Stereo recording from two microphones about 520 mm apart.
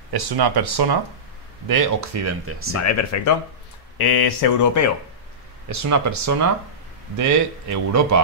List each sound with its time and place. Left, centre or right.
0.1 s speech: right
1.7 s speech: right
2.8 s speech: left
4.0 s speech: left
5.7 s speech: right